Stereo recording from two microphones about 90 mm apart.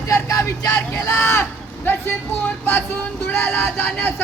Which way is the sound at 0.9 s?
30° left (ahead or behind).